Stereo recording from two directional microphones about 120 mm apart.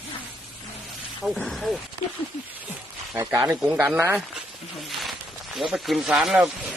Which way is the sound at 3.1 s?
25° right (ahead or behind).